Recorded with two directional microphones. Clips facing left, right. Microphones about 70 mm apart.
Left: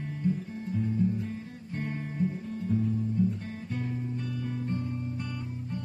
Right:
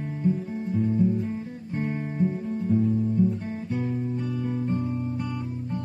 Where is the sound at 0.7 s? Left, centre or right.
Centre.